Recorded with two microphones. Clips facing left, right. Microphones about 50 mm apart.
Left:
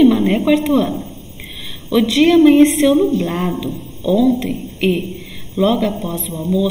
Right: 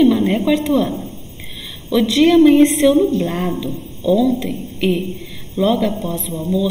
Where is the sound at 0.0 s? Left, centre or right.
Centre.